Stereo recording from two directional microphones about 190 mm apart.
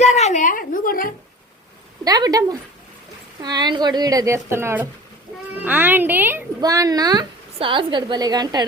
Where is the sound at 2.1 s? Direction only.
20° right (ahead or behind).